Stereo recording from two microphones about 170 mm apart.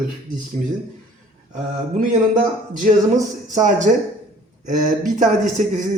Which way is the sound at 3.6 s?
45° right (ahead or behind).